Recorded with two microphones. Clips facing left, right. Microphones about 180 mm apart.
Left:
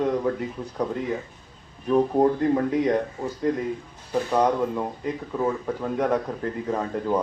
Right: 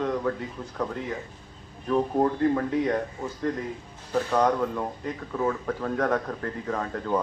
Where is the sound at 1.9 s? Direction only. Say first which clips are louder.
Left 4 dB; 20° left (ahead or behind).